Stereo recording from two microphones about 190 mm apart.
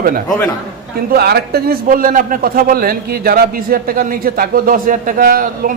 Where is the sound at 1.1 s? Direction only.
55° right (ahead or behind).